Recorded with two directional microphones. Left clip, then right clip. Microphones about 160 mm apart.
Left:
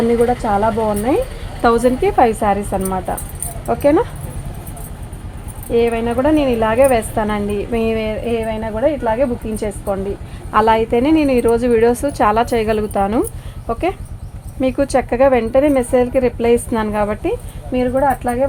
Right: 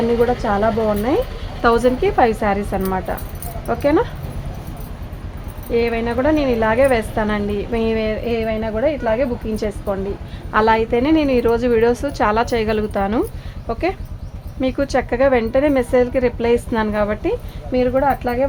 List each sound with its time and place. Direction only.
0.4 s speech: 15° left (ahead or behind)
1.6 s a woman's voice: 30° left (ahead or behind)
5.7 s a woman's voice: 25° left (ahead or behind)
17.7 s speech: 15° left (ahead or behind)